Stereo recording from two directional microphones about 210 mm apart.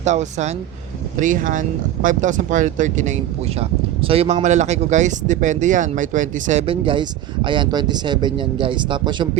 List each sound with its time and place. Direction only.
0.0 s speech: 35° right (ahead or behind)